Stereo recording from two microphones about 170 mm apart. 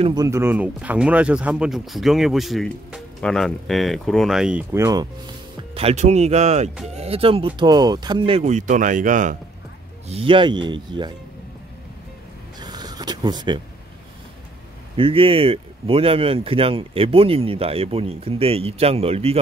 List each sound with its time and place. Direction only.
0.0 s speech: 25° right (ahead or behind); by 4.6 s 5° right (ahead or behind)
4.7 s speech: 20° right (ahead or behind)
5.8 s speech: 40° right (ahead or behind)
10.0 s speech: 35° right (ahead or behind)
12.5 s a sound: 25° right (ahead or behind)
15.0 s speech: 30° right (ahead or behind)